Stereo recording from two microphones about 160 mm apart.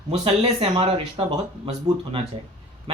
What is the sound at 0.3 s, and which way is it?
Speech, 40° right (ahead or behind).